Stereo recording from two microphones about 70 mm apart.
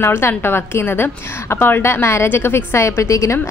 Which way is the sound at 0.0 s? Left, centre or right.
Left.